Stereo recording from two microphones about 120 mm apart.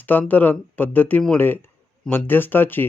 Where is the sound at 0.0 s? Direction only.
15° left (ahead or behind).